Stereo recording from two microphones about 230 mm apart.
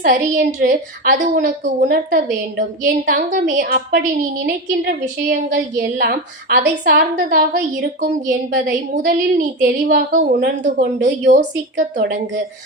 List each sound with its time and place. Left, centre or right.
0.0 s a woman's voice: right
11.9 s speech: right